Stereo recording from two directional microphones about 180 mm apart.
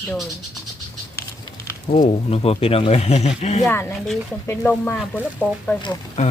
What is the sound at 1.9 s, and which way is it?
Speech, 40° left (ahead or behind).